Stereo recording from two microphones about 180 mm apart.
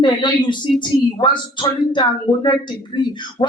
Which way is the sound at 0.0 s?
25° left (ahead or behind).